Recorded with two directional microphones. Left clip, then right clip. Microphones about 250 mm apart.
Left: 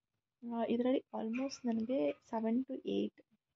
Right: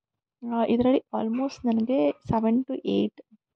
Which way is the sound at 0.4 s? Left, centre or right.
Right.